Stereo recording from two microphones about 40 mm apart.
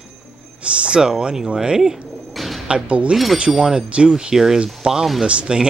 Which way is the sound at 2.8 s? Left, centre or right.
Right.